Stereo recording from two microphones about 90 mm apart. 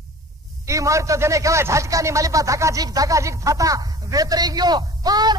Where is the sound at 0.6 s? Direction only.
35° right (ahead or behind).